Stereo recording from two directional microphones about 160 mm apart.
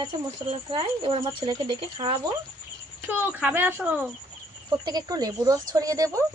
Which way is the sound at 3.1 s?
10° right (ahead or behind).